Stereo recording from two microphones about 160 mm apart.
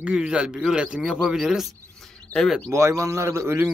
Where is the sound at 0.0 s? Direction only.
5° right (ahead or behind).